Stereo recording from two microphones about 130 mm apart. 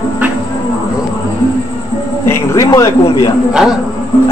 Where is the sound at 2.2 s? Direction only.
25° left (ahead or behind).